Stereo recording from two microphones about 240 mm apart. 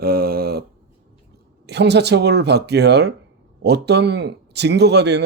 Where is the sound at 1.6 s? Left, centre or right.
Right.